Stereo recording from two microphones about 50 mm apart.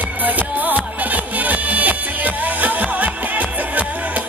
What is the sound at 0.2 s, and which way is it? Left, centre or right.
Music, right.